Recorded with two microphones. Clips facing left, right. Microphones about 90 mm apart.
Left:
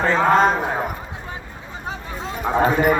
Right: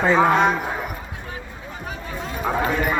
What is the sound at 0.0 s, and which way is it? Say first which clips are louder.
Speech: right 2 dB; 10° right (ahead or behind).